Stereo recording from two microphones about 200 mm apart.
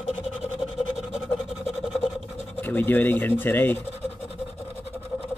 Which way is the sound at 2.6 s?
10° left (ahead or behind).